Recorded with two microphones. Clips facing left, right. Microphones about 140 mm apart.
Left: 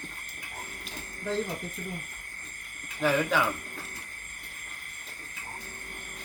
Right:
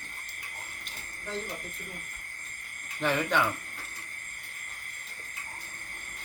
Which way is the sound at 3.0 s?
5° left (ahead or behind).